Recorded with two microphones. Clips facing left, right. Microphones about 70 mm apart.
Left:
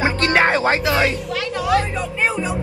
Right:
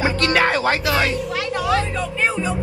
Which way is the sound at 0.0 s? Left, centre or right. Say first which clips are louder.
Left 1 dB; left.